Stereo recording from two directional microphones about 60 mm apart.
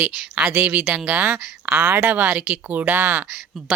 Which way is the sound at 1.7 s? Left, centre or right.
Right.